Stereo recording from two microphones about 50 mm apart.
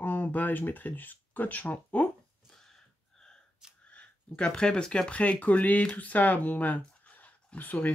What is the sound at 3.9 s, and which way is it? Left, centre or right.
Speech, centre.